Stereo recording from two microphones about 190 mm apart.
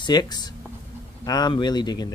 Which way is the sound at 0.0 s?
20° left (ahead or behind).